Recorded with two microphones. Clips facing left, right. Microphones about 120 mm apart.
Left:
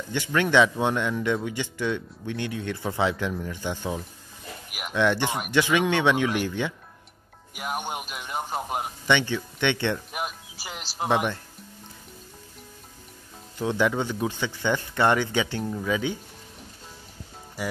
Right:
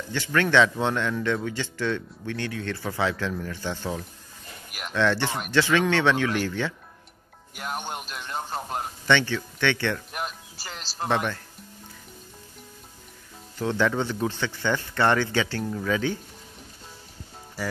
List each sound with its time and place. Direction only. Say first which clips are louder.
0.1 s a man's voice: even; 15° left (ahead or behind)
10.1 s music: left 1 dB; 10° left (ahead or behind)
13.6 s speech: even; 15° left (ahead or behind)